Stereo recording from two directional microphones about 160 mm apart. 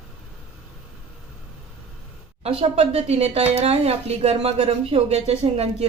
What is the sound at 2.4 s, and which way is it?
Speech, 40° right (ahead or behind).